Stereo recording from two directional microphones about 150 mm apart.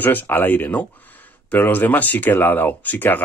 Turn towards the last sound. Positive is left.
turn(degrees=10)  # may be behind; listen again after turning